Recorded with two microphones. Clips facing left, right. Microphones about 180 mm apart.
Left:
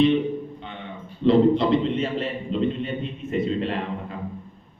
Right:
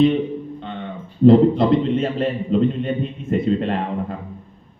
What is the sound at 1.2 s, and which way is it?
Speech, 50° right (ahead or behind).